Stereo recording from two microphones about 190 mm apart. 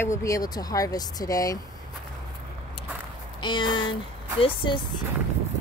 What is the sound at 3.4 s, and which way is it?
Speech, 25° left (ahead or behind).